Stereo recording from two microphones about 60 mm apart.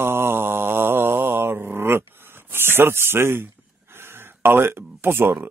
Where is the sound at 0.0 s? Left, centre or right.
Right.